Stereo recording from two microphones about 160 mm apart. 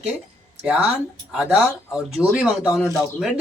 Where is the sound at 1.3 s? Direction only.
5° right (ahead or behind).